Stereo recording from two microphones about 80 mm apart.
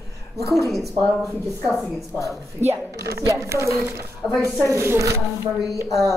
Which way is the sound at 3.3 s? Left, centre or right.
Right.